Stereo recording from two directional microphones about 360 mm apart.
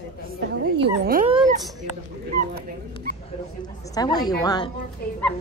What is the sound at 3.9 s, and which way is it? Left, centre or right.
Speech, centre.